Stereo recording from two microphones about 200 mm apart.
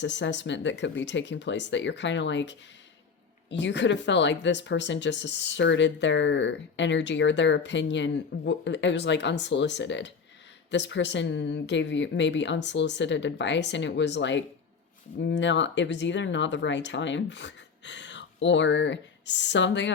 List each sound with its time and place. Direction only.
0.0 s speech: 60° left (ahead or behind)